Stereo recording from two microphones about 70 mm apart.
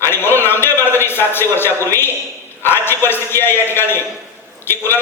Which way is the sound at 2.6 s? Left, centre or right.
Left.